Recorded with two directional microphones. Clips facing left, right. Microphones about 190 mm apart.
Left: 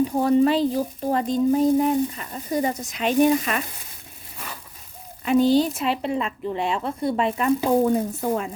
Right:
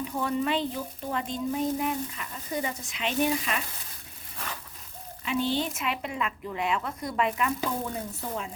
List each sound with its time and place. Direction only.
0.0 s speech: 35° left (ahead or behind)
5.2 s speech: 40° left (ahead or behind)